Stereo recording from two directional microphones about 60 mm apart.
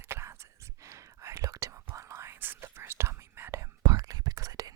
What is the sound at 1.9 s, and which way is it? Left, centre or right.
Whispering, right.